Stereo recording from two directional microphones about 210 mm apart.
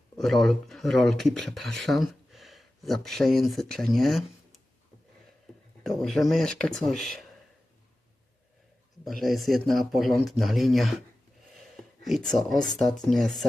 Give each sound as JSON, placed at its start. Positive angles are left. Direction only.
{"t": 0.2, "sound": "speech", "side_deg": 0}
{"t": 5.8, "sound": "speech", "side_deg": 0}
{"t": 9.0, "sound": "speech", "side_deg": 0}
{"t": 11.5, "sound": "a sound", "side_deg": 0}
{"t": 13.1, "sound": "speech", "side_deg": 0}